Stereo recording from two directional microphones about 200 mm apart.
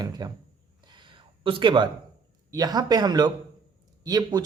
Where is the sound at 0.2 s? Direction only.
20° right (ahead or behind).